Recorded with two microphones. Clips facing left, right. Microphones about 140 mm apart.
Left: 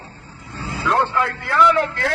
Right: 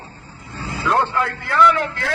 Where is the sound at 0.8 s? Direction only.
Centre (ahead or behind).